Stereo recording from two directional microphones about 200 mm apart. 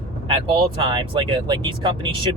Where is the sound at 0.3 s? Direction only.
25° right (ahead or behind).